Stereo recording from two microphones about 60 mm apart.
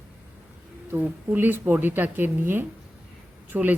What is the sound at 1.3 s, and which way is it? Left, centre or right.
Speech, right.